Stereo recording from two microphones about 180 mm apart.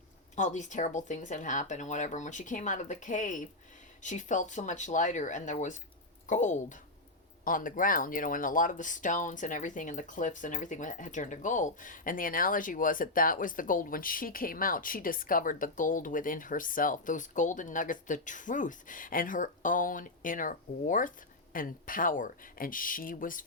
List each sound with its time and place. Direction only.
0.3 s speech: 40° left (ahead or behind)